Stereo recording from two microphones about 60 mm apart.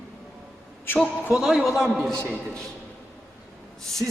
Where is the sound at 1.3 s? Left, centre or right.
Centre.